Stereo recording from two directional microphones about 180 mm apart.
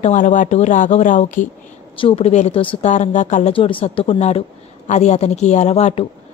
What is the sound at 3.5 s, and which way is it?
A woman's voice, 30° left (ahead or behind).